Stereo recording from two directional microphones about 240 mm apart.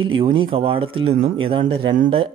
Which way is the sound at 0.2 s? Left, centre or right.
Right.